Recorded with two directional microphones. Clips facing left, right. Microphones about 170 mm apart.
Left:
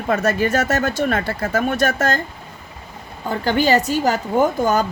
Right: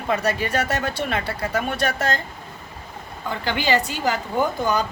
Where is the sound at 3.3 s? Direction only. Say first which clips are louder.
Left 5 dB; 45° left (ahead or behind).